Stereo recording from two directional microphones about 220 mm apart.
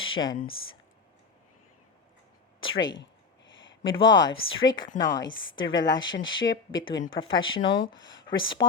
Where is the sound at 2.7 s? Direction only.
55° left (ahead or behind).